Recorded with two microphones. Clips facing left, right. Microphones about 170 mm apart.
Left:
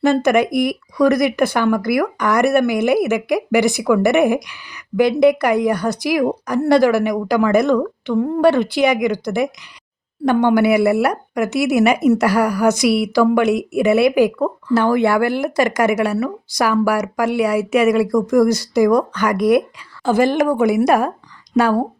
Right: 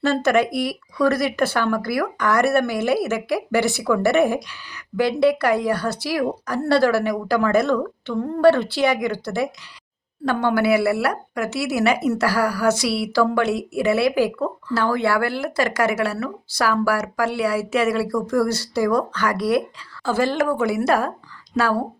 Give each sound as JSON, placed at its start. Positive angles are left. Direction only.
{"t": 0.0, "sound": "speech", "side_deg": 15}